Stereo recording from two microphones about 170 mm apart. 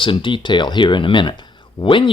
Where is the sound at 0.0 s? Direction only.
30° left (ahead or behind).